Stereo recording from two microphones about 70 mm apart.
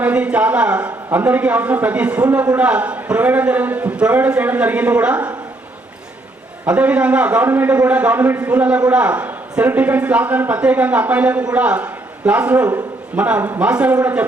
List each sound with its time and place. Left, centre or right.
0.0 s a man's voice: centre
6.7 s a man's voice: centre